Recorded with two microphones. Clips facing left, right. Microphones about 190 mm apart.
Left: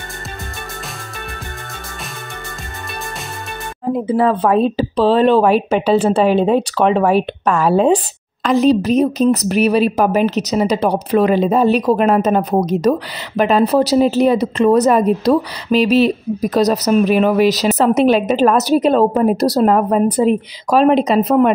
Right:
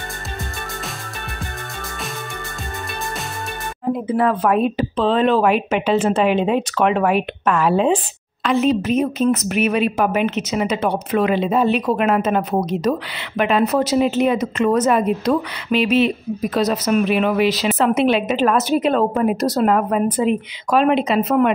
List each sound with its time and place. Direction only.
4.1 s a woman's voice: 30° left (ahead or behind)